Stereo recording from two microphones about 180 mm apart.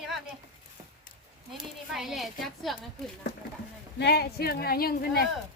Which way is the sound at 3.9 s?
65° left (ahead or behind).